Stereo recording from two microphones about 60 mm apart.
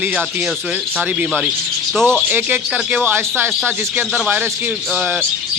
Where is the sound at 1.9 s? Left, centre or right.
Centre.